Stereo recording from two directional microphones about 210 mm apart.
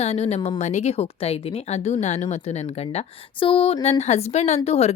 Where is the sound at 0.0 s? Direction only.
30° left (ahead or behind).